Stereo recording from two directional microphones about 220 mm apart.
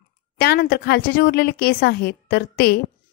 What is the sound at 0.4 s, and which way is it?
A woman's voice, 45° left (ahead or behind).